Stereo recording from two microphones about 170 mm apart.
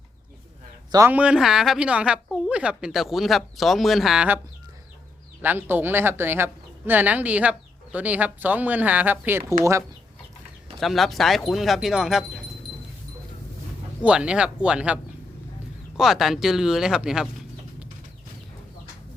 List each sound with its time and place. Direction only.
0.9 s a man's voice: 20° right (ahead or behind)
1.1 s speech: 5° right (ahead or behind)
5.4 s speech: 10° right (ahead or behind)
10.8 s speech: centre (ahead or behind)
14.0 s speech: 5° right (ahead or behind)
16.0 s speech: centre (ahead or behind)